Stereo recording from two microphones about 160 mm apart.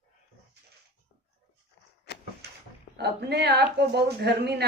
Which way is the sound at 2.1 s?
90° left.